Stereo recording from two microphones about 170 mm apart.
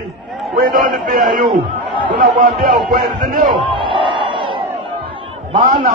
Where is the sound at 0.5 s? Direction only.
50° right (ahead or behind).